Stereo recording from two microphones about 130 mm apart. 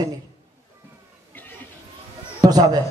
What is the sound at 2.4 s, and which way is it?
Speech, 30° right (ahead or behind).